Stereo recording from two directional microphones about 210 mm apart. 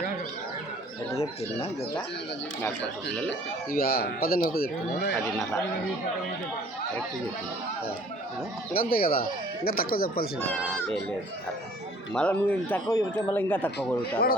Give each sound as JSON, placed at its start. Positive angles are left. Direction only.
{"t": 2.6, "sound": "speech", "side_deg": 5}
{"t": 3.7, "sound": "speech", "side_deg": 45}
{"t": 8.7, "sound": "speech", "side_deg": 45}
{"t": 12.1, "sound": "speech", "side_deg": 5}